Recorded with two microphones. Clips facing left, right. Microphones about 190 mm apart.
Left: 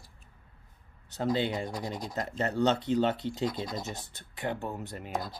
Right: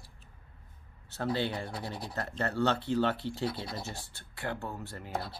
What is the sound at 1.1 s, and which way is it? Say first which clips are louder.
Speech: left 3 dB; 15° left (ahead or behind).